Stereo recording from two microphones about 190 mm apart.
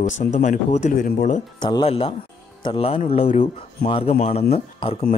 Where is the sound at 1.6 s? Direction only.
25° left (ahead or behind).